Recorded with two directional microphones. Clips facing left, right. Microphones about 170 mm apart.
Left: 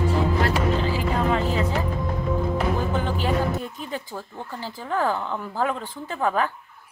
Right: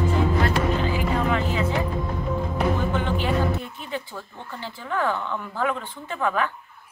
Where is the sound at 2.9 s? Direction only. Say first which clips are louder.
Even; 35° left (ahead or behind).